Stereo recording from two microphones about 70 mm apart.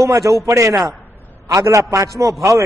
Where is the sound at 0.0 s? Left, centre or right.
Right.